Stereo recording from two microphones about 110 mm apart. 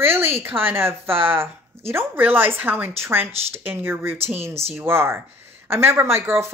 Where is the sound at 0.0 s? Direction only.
20° right (ahead or behind).